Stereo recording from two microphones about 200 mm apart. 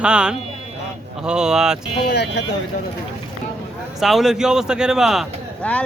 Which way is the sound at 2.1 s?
60° left (ahead or behind).